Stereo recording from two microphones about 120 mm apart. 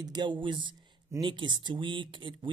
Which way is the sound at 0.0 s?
40° right (ahead or behind).